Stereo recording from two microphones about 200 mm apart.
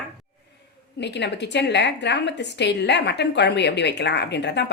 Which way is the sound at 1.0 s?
60° left (ahead or behind).